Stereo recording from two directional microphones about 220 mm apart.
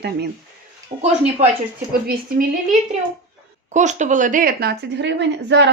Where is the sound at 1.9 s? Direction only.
40° right (ahead or behind).